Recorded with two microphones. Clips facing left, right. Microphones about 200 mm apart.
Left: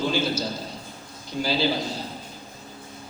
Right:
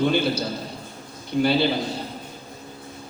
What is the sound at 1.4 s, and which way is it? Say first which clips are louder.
Speech: right 5 dB; 60° right (ahead or behind).